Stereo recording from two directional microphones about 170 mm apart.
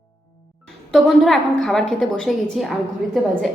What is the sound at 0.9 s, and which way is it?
A woman's voice, centre (ahead or behind).